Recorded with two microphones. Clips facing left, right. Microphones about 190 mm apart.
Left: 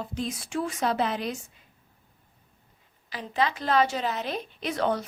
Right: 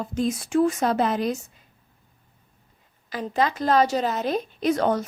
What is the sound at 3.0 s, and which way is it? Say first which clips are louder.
A woman's voice: right 4 dB; 45° right (ahead or behind).